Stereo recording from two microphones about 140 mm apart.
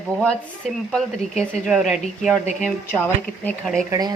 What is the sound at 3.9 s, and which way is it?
Speech, 30° right (ahead or behind).